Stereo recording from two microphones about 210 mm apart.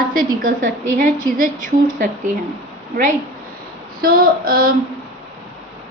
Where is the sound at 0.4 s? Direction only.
40° right (ahead or behind).